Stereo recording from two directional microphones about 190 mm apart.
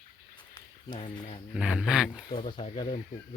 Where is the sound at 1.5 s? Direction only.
5° right (ahead or behind).